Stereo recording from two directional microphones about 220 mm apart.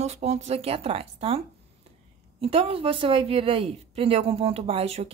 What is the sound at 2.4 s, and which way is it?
Speech, 25° right (ahead or behind).